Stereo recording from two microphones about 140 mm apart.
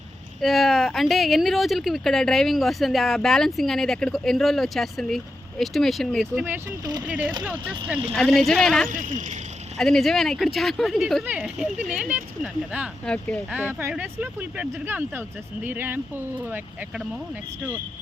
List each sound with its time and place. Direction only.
0.4 s speech: centre (ahead or behind)
6.7 s speech: 30° right (ahead or behind)
7.1 s speech: 10° right (ahead or behind)
8.1 s speech: 5° left (ahead or behind)
8.9 s speech: 70° right (ahead or behind)
9.7 s speech: centre (ahead or behind)
11.3 s speech: 10° right (ahead or behind)
13.1 s speech: 5° left (ahead or behind)
13.7 s speech: 15° right (ahead or behind)